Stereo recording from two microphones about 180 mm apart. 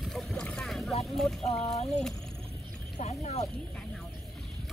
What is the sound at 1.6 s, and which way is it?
Speech, 35° left (ahead or behind).